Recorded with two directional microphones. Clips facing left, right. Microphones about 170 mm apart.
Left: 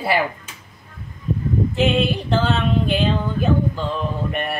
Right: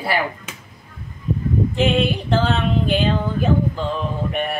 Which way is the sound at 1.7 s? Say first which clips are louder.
Even; centre (ahead or behind).